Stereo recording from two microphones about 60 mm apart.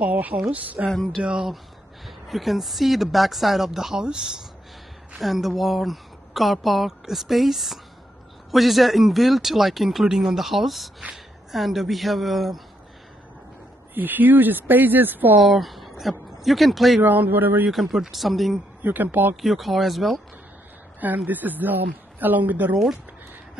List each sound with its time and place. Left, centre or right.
0.0 s speech: right
0.8 s speech: centre
1.2 s speech: centre
2.0 s speech: centre
13.9 s speech: right
15.4 s speech: centre
17.0 s speech: right
17.6 s speech: centre
18.8 s speech: right
19.4 s speech: centre
21.3 s speech: right